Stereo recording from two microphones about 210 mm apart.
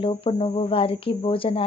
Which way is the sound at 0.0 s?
25° left (ahead or behind).